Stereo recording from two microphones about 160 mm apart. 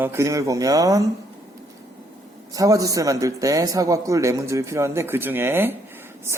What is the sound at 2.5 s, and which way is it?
A man's voice, 20° right (ahead or behind).